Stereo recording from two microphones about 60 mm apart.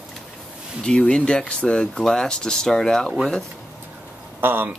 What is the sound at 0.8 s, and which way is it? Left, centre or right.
Speech, centre.